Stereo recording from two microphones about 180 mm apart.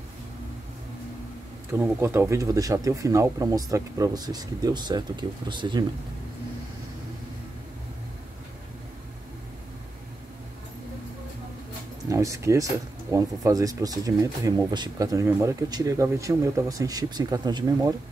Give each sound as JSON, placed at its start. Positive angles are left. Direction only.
{"t": 1.7, "sound": "speech", "side_deg": -15}
{"t": 12.1, "sound": "speech", "side_deg": -15}